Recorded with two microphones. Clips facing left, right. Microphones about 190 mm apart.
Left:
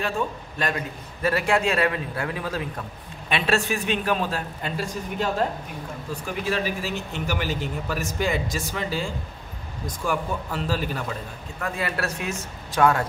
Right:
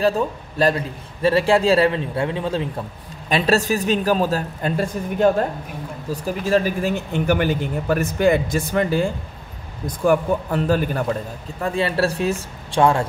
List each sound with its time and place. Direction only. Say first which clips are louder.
0.6 s a man's voice: right 9 dB; 35° right (ahead or behind)
3.3 s a man's voice: right 5 dB; 40° right (ahead or behind)
4.7 s a man's voice: right 5 dB; 55° right (ahead or behind)
6.2 s a man's voice: right 7 dB; 45° right (ahead or behind)
11.6 s a man's voice: right 8 dB; 30° right (ahead or behind)